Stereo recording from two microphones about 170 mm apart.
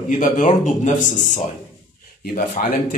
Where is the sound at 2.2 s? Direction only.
60° left (ahead or behind).